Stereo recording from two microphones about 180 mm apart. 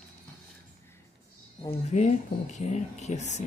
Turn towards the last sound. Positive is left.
turn(degrees=40)  # may be behind; listen again after turning